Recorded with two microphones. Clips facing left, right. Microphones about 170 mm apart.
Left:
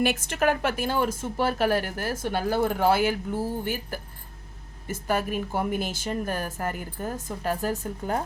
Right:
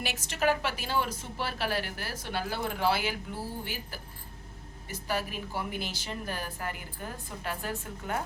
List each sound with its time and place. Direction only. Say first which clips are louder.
0.0 s a woman's voice: left 6 dB; 55° left (ahead or behind)